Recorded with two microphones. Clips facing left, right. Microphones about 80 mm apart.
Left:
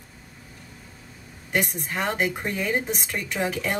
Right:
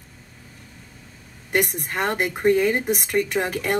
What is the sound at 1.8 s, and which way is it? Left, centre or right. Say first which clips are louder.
Speech: right 2 dB; right.